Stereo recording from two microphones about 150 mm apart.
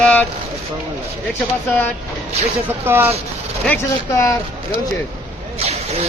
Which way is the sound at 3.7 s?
15° left (ahead or behind).